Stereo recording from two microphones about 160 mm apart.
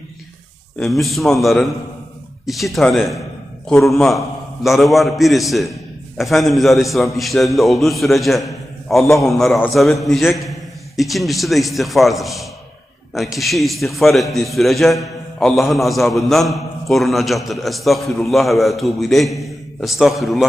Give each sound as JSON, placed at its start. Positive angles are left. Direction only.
{"t": 0.8, "sound": "a man's voice", "side_deg": 0}